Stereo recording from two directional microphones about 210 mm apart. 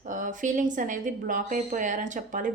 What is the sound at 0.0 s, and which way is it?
A woman's voice, 40° right (ahead or behind).